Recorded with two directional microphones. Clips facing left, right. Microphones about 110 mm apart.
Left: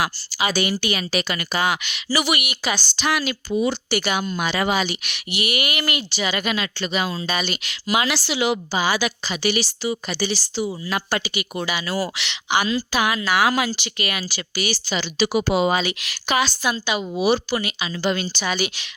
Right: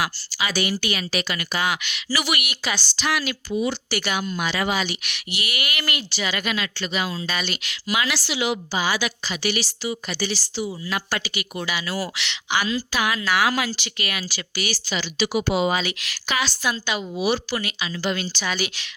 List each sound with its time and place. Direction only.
0.3 s a woman's voice: 25° left (ahead or behind)
1.3 s a woman's voice: 35° left (ahead or behind)
3.5 s a woman's voice: 35° left (ahead or behind)
3.8 s a woman's voice: 20° left (ahead or behind)
4.4 s a woman's voice: 40° left (ahead or behind)
4.7 s a woman's voice: 25° left (ahead or behind)
10.6 s a woman's voice: 35° left (ahead or behind)
15.2 s speech: 45° left (ahead or behind)
15.8 s a woman's voice: 20° left (ahead or behind)